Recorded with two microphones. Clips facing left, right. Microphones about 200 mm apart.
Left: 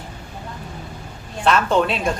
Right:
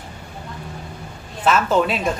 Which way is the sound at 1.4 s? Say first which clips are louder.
Even; 5° right (ahead or behind).